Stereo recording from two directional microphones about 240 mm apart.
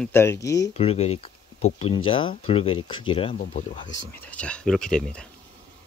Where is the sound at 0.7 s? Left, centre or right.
Left.